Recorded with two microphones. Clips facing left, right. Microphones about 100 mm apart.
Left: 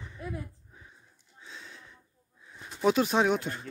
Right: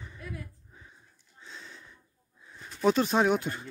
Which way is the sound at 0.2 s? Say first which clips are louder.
Left 4 dB; 25° left (ahead or behind).